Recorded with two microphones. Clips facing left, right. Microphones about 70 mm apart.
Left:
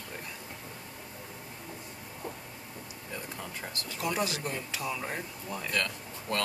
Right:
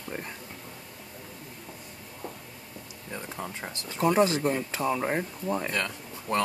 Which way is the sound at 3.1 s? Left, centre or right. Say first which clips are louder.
Right 4 dB; right.